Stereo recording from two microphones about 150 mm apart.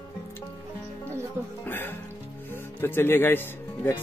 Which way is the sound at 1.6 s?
15° left (ahead or behind).